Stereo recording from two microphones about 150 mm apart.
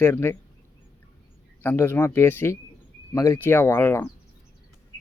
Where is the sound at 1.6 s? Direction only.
15° left (ahead or behind).